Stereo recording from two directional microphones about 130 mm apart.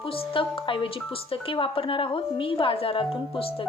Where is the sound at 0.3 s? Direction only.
40° left (ahead or behind).